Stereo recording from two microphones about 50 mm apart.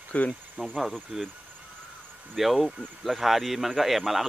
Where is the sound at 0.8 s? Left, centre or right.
Centre.